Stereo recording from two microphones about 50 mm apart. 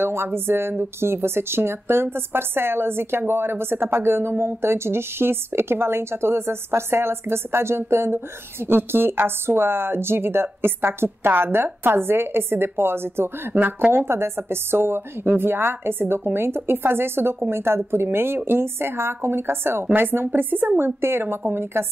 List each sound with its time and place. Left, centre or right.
0.0 s speech: right
14.0 s speech: right